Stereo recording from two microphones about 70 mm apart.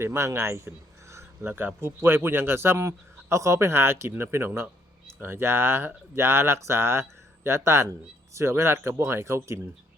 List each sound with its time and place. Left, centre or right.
0.0 s speech: right
1.1 s a sound: right
2.0 s speech: right